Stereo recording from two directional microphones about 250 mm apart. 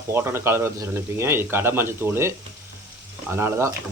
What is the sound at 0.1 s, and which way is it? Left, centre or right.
Speech, centre.